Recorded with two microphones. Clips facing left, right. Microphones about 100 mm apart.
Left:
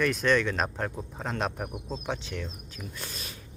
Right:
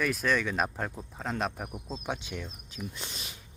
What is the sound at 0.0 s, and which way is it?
Speech, 5° right (ahead or behind).